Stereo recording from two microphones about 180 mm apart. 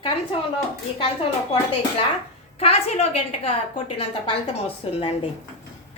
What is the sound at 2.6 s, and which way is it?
A woman's voice, 35° left (ahead or behind).